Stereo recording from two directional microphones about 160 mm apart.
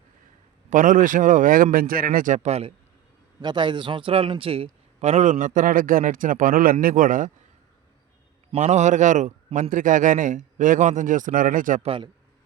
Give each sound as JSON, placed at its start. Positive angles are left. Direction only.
{"t": 0.7, "sound": "speech", "side_deg": -55}
{"t": 3.4, "sound": "a man's voice", "side_deg": -30}
{"t": 8.5, "sound": "a man's voice", "side_deg": -45}
{"t": 11.8, "sound": "a man's voice", "side_deg": -35}